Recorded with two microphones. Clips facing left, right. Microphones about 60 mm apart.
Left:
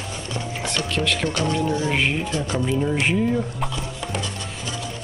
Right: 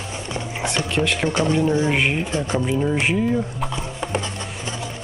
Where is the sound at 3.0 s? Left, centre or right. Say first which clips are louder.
Right 1 dB; centre.